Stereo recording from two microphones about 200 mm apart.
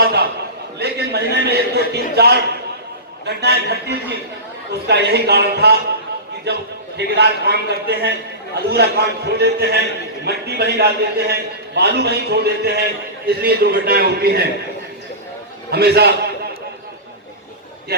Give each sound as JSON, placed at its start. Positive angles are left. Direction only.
{"t": 0.0, "sound": "a sound", "side_deg": -50}
{"t": 0.8, "sound": "a man's voice", "side_deg": -55}
{"t": 15.7, "sound": "a man's voice", "side_deg": -55}